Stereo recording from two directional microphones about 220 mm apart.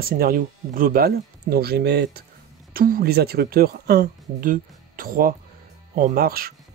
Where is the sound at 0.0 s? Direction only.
40° right (ahead or behind).